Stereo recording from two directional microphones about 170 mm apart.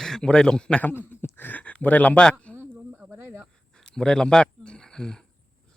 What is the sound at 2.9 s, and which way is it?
Snake, 10° right (ahead or behind).